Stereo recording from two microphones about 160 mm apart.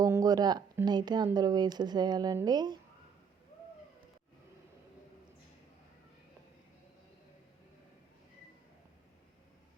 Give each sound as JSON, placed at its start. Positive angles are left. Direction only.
{"t": 0.0, "sound": "speech", "side_deg": -20}